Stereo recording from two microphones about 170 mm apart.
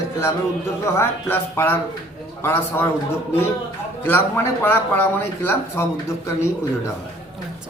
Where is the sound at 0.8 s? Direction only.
15° left (ahead or behind).